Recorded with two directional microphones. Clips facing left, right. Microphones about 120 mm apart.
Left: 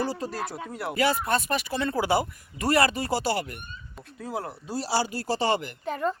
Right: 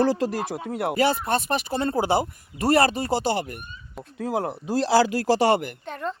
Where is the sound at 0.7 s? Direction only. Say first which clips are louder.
Right 7 dB; 75° right (ahead or behind).